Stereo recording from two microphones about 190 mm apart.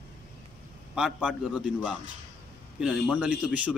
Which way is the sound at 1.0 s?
Centre (ahead or behind).